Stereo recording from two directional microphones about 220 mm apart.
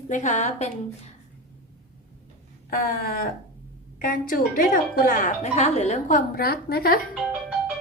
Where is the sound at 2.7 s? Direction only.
40° left (ahead or behind).